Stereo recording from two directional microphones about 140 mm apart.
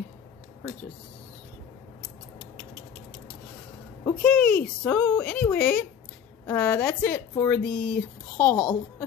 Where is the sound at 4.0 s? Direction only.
10° left (ahead or behind).